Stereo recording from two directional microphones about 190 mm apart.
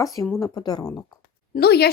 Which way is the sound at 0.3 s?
20° left (ahead or behind).